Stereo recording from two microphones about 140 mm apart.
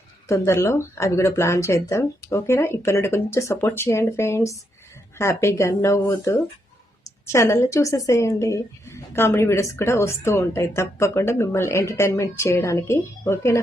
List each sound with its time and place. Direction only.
0.3 s speech: 20° left (ahead or behind)